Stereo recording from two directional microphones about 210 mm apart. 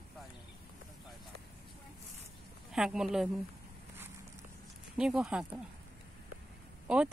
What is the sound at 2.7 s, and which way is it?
Speech, 5° right (ahead or behind).